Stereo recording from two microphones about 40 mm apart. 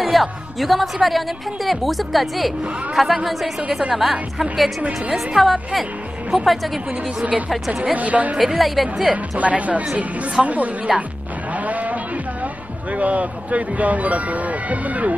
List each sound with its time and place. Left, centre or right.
0.0 s a woman's voice: centre
7.9 s speech: right
8.5 s a woman's voice: centre
9.4 s speech: right
10.9 s a woman's voice: centre
11.5 s a sound: right
12.9 s speech: right